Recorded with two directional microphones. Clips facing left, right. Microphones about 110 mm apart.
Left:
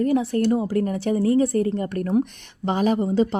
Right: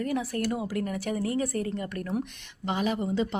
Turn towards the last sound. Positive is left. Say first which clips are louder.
# left 8 dB
turn(degrees=40)  # may be behind; listen again after turning